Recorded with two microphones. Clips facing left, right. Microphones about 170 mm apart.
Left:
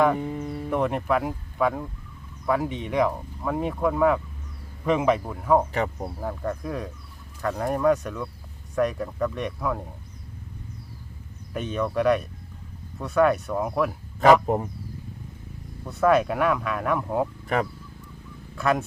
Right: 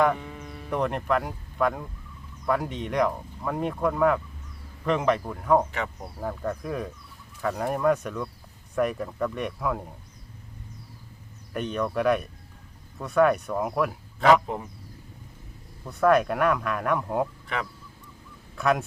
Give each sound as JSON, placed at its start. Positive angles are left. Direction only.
{"t": 0.2, "sound": "music", "side_deg": 30}
{"t": 0.7, "sound": "speech", "side_deg": 5}
{"t": 5.7, "sound": "speech", "side_deg": 35}
{"t": 6.1, "sound": "speech", "side_deg": 0}
{"t": 11.5, "sound": "speech", "side_deg": 0}
{"t": 14.4, "sound": "speech", "side_deg": 45}
{"t": 15.9, "sound": "speech", "side_deg": 0}
{"t": 17.5, "sound": "speech", "side_deg": 45}
{"t": 18.5, "sound": "speech", "side_deg": 0}